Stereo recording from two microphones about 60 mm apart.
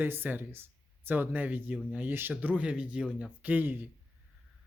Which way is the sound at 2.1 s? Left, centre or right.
Right.